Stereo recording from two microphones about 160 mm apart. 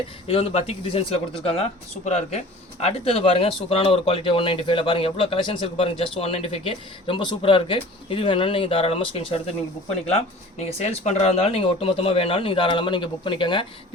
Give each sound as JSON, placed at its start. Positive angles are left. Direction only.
{"t": 0.3, "sound": "speech", "side_deg": 35}